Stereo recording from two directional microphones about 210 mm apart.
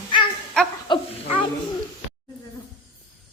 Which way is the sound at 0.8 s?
20° left (ahead or behind).